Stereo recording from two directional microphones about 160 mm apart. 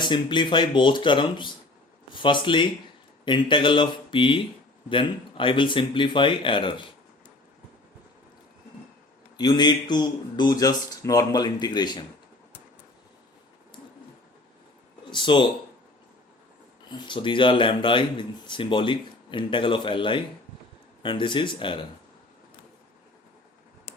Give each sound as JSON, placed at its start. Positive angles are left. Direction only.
{"t": 0.0, "sound": "speech", "side_deg": 30}
{"t": 9.4, "sound": "speech", "side_deg": 25}
{"t": 15.1, "sound": "speech", "side_deg": 30}
{"t": 17.1, "sound": "speech", "side_deg": 30}